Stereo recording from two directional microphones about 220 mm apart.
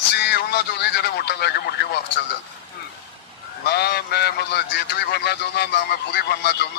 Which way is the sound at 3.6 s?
50° left (ahead or behind).